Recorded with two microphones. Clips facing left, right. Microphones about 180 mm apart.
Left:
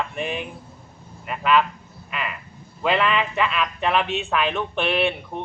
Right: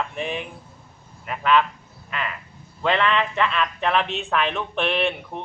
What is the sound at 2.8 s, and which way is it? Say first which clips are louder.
Speech: even; 5° left (ahead or behind).